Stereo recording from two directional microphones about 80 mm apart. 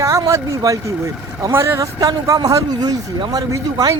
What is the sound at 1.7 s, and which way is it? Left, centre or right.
Speech, right.